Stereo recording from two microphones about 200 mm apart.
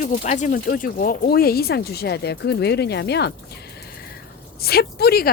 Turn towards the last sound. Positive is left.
turn(degrees=50)  # may be behind; listen again after turning